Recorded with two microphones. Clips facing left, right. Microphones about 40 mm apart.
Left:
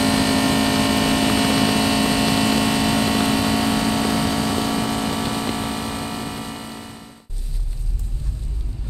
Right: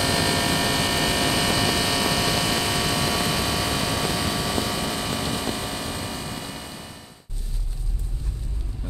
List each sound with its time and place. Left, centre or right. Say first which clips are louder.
0.0 s vehicle: left 4 dB; centre
5.4 s vehicle: left 4 dB; left
5.9 s vehicle: left 4 dB; centre